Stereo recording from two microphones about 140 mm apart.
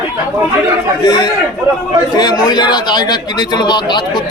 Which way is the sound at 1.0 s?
30° left (ahead or behind).